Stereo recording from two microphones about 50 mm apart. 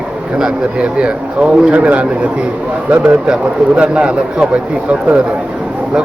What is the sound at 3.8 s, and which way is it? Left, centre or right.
A man's voice, centre.